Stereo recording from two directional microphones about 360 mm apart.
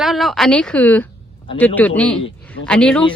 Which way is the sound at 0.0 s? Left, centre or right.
Centre.